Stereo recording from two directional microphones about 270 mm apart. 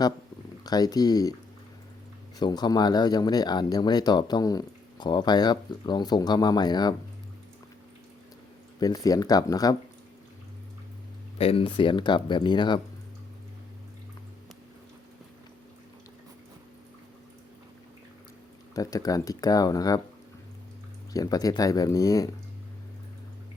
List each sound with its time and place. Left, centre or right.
0.6 s speech: centre
2.4 s speech: centre
8.8 s speech: centre
11.3 s speech: left
18.7 s speech: centre
21.1 s speech: centre